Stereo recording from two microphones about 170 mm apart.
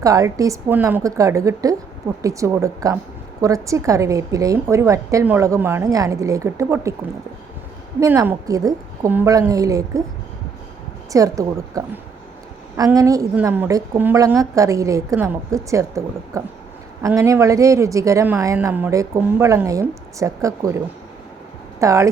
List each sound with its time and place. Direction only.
0.0 s a woman's voice: 20° right (ahead or behind)
7.9 s a woman's voice: 15° right (ahead or behind)
11.1 s a woman's voice: 20° right (ahead or behind)